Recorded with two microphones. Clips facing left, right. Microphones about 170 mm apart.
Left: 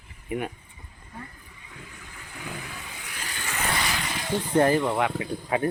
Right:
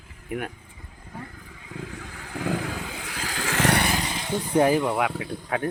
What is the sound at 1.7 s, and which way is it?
Vehicle, 90° right.